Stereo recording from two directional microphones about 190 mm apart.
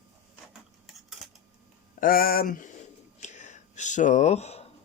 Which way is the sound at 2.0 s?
50° left (ahead or behind).